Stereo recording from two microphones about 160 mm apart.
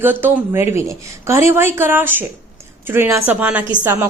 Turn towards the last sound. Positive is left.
turn(degrees=-15)  # may be behind; listen again after turning